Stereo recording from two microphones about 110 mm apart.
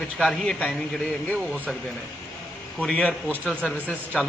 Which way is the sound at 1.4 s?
15° right (ahead or behind).